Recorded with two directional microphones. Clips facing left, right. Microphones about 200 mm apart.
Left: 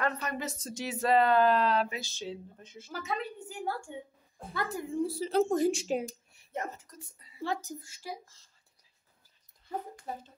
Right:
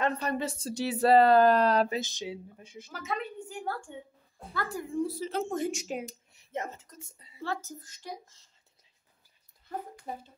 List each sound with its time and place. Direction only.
0.0 s speech: 30° right (ahead or behind)
2.0 s a sound: 15° right (ahead or behind)
2.9 s a woman's voice: centre (ahead or behind)
4.6 s a woman's voice: 20° left (ahead or behind)
5.2 s speech: 35° left (ahead or behind)
6.0 s speech: 20° right (ahead or behind)
7.4 s speech: 15° left (ahead or behind)
10.1 s a sound: 10° right (ahead or behind)